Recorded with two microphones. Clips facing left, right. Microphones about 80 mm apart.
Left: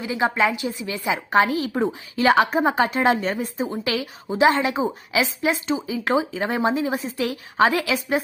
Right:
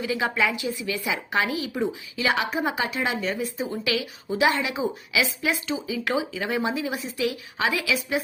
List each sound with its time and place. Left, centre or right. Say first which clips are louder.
0.0 s a woman's voice: left 3 dB; left
3.7 s a woman's voice: left 2 dB; left